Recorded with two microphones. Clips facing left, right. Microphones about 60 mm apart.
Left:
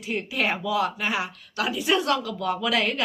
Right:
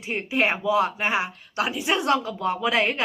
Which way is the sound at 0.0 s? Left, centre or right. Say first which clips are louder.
Right 3 dB; right.